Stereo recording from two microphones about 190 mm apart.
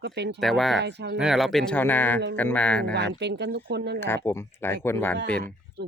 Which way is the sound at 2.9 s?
65° right (ahead or behind).